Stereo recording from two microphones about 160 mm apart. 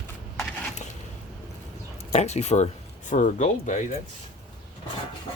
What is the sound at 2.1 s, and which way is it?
Speech, 45° left (ahead or behind).